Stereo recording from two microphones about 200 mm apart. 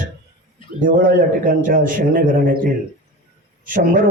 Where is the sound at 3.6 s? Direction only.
45° right (ahead or behind).